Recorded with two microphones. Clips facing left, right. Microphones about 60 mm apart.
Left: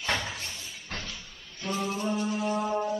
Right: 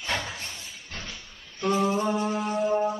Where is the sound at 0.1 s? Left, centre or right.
Centre.